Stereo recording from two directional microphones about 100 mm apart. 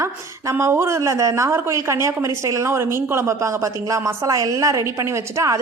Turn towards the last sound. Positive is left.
turn(degrees=-30)  # may be behind; listen again after turning